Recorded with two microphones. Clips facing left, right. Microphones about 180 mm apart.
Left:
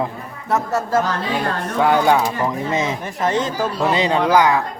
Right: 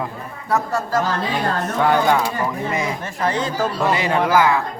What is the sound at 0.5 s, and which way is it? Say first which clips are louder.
Speech: left 2 dB; 25° left (ahead or behind).